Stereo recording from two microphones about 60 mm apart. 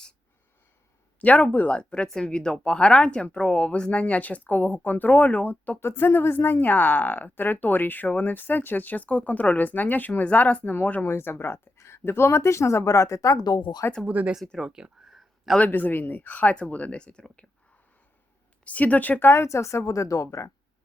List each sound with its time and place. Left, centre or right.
1.2 s speech: left
5.8 s a woman's voice: left
11.0 s speech: left
14.1 s speech: right
14.6 s speech: centre
15.5 s speech: left
18.6 s speech: left
19.3 s a woman's voice: left